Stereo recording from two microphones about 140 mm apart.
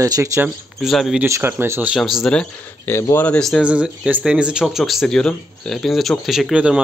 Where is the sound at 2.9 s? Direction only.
20° left (ahead or behind).